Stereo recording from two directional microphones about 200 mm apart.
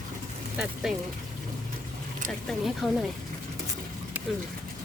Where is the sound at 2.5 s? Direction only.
Centre (ahead or behind).